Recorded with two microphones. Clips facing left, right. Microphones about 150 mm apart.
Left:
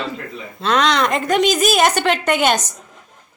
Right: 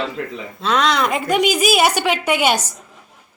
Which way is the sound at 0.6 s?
Centre (ahead or behind).